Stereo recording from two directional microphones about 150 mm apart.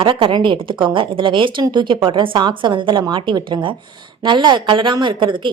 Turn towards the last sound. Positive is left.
turn(degrees=-35)  # may be behind; listen again after turning